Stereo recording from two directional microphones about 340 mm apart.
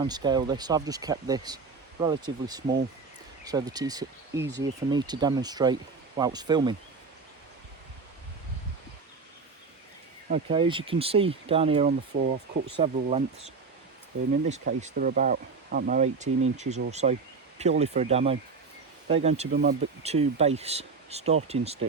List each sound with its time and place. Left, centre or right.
0.0 s speech: centre
10.2 s speech: centre
14.5 s speech: right